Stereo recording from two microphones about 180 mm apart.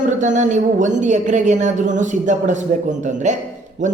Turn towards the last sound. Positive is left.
turn(degrees=-45)  # may be behind; listen again after turning